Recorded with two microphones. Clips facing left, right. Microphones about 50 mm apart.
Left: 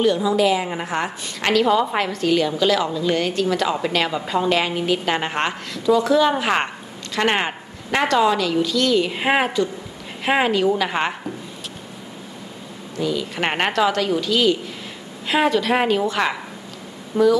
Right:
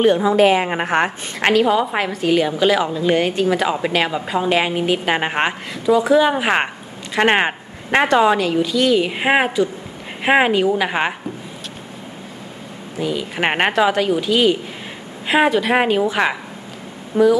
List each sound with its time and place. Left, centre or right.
0.0 s a woman's voice: right
1.4 s a woman's voice: right
8.5 s a woman's voice: centre
13.0 s a woman's voice: right
17.1 s speech: right